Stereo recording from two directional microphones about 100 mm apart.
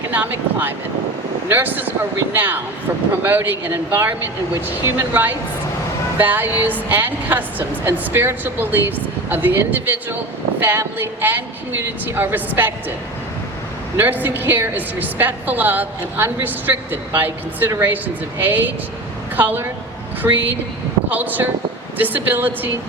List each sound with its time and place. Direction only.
0.1 s a woman's voice: 20° right (ahead or behind)
13.9 s a woman's voice: 20° right (ahead or behind)
20.2 s a woman's voice: 30° right (ahead or behind)
21.1 s a woman's voice: 15° right (ahead or behind)